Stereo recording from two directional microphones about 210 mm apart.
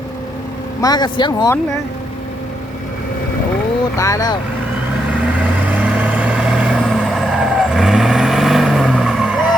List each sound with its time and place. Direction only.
0.8 s speech: 20° left (ahead or behind)
3.9 s speech: 15° left (ahead or behind)
5.4 s vehicle: 10° right (ahead or behind)